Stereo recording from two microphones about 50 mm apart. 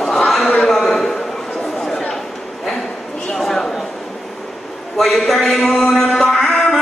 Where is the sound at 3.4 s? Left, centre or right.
Centre.